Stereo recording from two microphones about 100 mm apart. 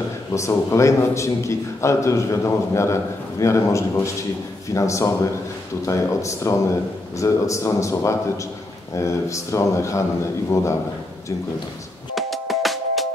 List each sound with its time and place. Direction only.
0.3 s a man's voice: 30° left (ahead or behind)
12.2 s music: centre (ahead or behind)